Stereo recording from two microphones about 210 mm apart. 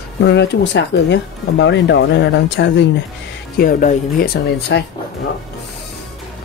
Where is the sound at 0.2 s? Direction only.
55° left (ahead or behind).